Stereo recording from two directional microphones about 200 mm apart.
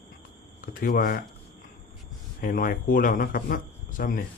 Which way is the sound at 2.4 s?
45° left (ahead or behind).